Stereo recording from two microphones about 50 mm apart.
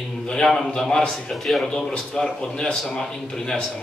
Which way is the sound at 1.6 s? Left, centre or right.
Centre.